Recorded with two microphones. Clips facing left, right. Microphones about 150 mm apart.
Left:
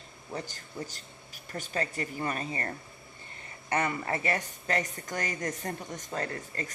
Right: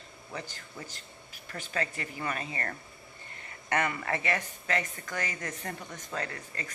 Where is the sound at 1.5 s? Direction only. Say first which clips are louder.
Left 1 dB; 40° left (ahead or behind).